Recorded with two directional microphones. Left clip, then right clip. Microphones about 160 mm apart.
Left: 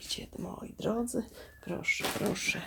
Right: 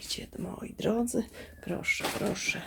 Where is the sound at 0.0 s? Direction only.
Centre (ahead or behind).